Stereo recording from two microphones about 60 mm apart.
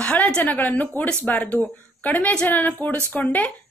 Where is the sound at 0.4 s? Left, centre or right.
Left.